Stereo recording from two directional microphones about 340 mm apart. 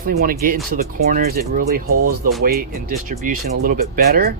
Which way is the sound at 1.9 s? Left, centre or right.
Right.